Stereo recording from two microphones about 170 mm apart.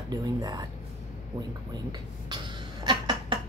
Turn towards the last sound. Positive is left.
turn(degrees=-25)  # may be behind; listen again after turning